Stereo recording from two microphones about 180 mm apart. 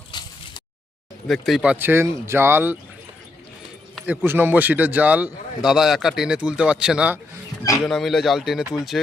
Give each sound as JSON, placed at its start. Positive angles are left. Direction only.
{"t": 0.1, "sound": "a sound", "side_deg": 25}
{"t": 1.3, "sound": "speech", "side_deg": 0}
{"t": 4.0, "sound": "speech", "side_deg": -10}